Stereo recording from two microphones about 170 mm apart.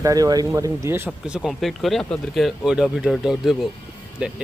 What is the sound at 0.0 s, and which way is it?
Speech, 20° right (ahead or behind).